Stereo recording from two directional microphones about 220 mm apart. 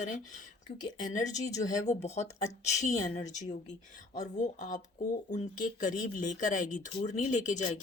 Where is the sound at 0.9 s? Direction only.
35° left (ahead or behind).